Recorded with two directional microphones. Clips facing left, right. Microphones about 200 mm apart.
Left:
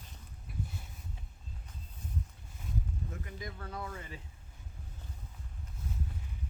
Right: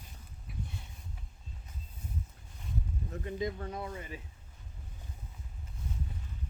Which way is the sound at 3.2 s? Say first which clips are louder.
Right 9 dB; 20° right (ahead or behind).